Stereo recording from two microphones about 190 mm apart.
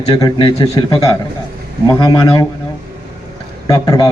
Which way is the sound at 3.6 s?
20° left (ahead or behind).